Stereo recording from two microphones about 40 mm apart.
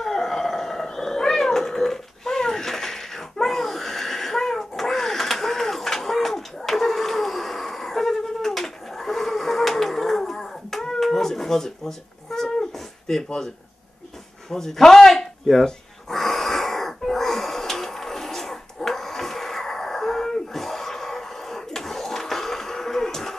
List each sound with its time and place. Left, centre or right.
0.0 s cat: centre
13.0 s speech: centre
14.5 s speech: centre
15.6 s wheeze: centre